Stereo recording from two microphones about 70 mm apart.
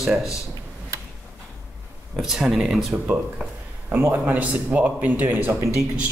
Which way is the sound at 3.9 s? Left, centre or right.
Right.